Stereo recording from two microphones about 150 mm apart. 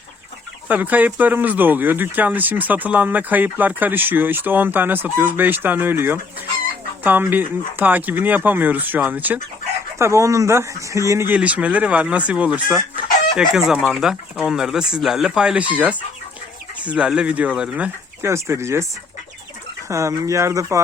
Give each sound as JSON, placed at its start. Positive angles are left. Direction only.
{"t": 0.7, "sound": "speech", "side_deg": -10}
{"t": 16.8, "sound": "speech", "side_deg": -5}
{"t": 19.9, "sound": "speech", "side_deg": -20}